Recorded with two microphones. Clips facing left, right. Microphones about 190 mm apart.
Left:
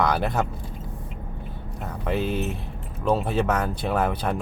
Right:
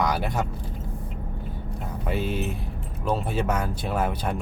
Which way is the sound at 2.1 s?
5° right (ahead or behind).